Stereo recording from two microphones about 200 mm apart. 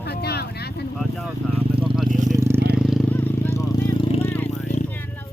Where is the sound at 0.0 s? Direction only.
55° left (ahead or behind).